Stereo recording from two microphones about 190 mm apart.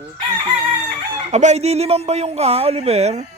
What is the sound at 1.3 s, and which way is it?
Speech, 35° right (ahead or behind).